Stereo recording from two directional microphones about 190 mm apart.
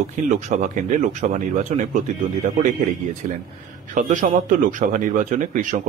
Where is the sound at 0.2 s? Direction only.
45° right (ahead or behind).